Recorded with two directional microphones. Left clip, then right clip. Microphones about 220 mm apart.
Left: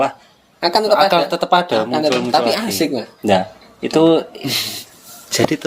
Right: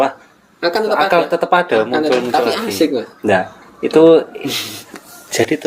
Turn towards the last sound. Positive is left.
turn(degrees=30)  # may be behind; listen again after turning